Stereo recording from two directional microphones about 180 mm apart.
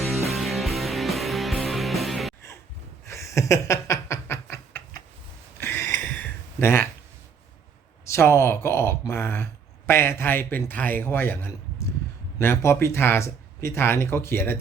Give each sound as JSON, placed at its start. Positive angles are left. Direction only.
{"t": 0.3, "sound": "music", "side_deg": 0}
{"t": 3.1, "sound": "a sound", "side_deg": 15}
{"t": 8.0, "sound": "speech", "side_deg": 15}
{"t": 12.4, "sound": "speech", "side_deg": 15}